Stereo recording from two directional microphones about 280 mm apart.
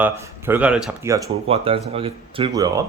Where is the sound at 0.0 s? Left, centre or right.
Centre.